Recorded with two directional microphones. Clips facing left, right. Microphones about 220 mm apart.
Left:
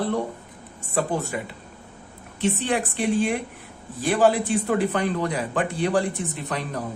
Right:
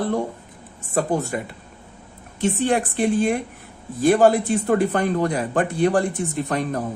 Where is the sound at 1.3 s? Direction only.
45° right (ahead or behind).